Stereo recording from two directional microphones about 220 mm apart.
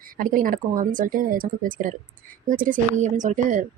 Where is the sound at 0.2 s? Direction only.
35° right (ahead or behind).